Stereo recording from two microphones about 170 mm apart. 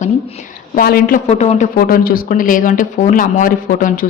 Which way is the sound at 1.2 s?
40° left (ahead or behind).